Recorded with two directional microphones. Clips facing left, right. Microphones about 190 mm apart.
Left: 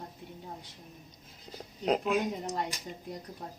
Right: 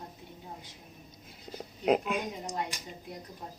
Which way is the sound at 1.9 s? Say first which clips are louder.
Even; centre (ahead or behind).